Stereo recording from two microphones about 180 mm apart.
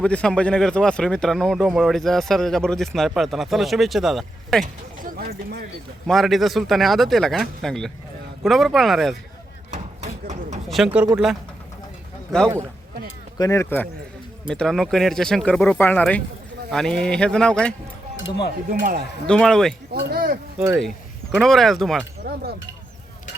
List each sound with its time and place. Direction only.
0.0 s speech: 5° left (ahead or behind)
4.6 s speech: 50° right (ahead or behind)
6.1 s speech: centre (ahead or behind)
10.8 s speech: 5° right (ahead or behind)
13.4 s speech: 15° left (ahead or behind)
14.5 s speech: 5° left (ahead or behind)
18.7 s speech: 50° right (ahead or behind)
19.3 s speech: 5° left (ahead or behind)
19.9 s speech: 60° right (ahead or behind)
20.6 s speech: 5° right (ahead or behind)
22.3 s speech: 60° right (ahead or behind)